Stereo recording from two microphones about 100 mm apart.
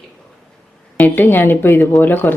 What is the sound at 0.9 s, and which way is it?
A woman's voice, 20° left (ahead or behind).